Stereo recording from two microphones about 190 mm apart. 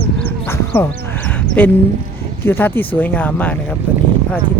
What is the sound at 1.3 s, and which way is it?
Sheep, 10° left (ahead or behind).